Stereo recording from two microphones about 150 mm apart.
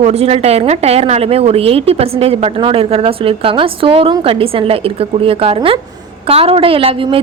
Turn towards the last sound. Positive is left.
turn(degrees=-40)  # may be behind; listen again after turning